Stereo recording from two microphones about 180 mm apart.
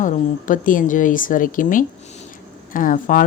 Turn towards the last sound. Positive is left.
turn(degrees=50)  # may be behind; listen again after turning